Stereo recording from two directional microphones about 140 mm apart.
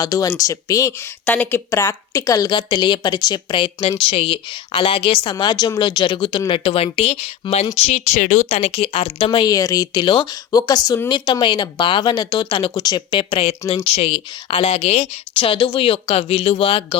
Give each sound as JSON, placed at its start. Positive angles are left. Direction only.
{"t": 0.0, "sound": "speech", "side_deg": 25}
{"t": 1.2, "sound": "speech", "side_deg": 10}
{"t": 8.4, "sound": "speech", "side_deg": 45}
{"t": 9.5, "sound": "speech", "side_deg": 25}
{"t": 11.1, "sound": "speech", "side_deg": 35}